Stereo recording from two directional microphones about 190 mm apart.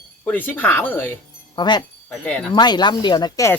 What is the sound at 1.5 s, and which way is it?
Speech, 25° left (ahead or behind).